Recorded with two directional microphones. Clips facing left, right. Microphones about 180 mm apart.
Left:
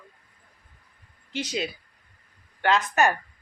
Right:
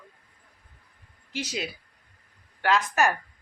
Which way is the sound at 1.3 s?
5° right (ahead or behind).